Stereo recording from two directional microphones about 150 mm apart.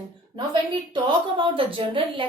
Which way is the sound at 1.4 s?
35° right (ahead or behind).